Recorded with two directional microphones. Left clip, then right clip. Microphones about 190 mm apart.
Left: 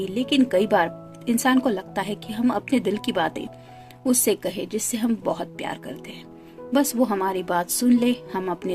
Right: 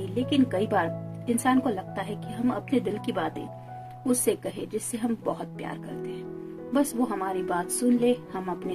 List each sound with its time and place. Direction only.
0.1 s a woman's voice: 50° left (ahead or behind)
6.7 s a woman's voice: 50° left (ahead or behind)